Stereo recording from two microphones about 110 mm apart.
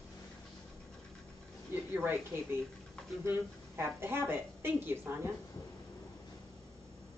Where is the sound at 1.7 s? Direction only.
20° right (ahead or behind).